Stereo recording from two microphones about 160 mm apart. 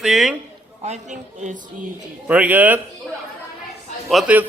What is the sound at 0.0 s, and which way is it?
Speech, centre (ahead or behind).